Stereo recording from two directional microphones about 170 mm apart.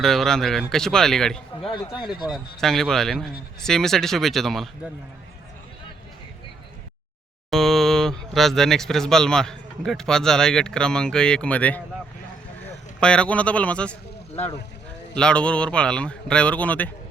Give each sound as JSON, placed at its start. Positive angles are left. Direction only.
{"t": 0.0, "sound": "speech", "side_deg": 0}
{"t": 1.6, "sound": "speech", "side_deg": 25}
{"t": 2.3, "sound": "speech", "side_deg": 0}
{"t": 7.5, "sound": "speech", "side_deg": 0}
{"t": 15.1, "sound": "speech", "side_deg": 5}